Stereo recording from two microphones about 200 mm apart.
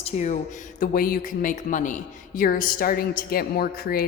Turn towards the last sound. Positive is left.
turn(degrees=45)  # may be behind; listen again after turning